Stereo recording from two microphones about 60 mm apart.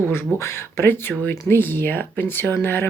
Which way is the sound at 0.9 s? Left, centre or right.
Left.